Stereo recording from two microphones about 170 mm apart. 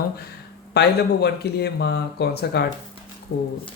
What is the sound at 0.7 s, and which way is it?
Speech, 70° left (ahead or behind).